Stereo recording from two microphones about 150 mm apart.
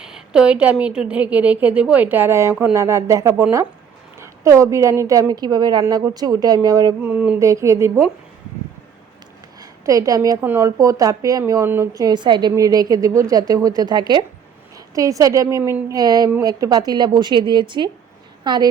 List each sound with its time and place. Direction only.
0.0 s a woman's voice: 5° right (ahead or behind); by 6.9 s 25° right (ahead or behind)
7.0 s a woman's voice: 10° right (ahead or behind)
9.6 s a sound: 20° right (ahead or behind)
10.4 s a woman's voice: 20° right (ahead or behind)